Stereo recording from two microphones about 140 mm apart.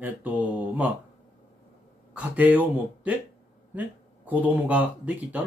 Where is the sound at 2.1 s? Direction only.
10° right (ahead or behind).